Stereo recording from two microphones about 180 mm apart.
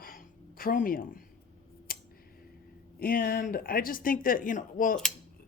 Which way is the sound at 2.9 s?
55° left (ahead or behind).